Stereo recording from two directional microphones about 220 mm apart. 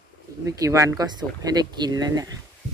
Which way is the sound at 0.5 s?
15° right (ahead or behind).